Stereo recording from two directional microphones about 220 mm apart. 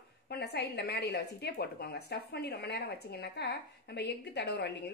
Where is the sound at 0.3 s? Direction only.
50° left (ahead or behind).